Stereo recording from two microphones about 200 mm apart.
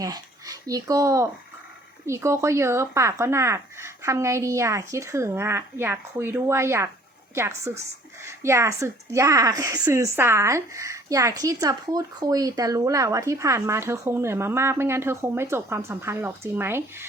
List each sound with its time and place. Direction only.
0.0 s a woman's voice: 15° right (ahead or behind)